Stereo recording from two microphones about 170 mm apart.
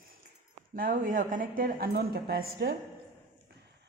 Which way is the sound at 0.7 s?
55° right (ahead or behind).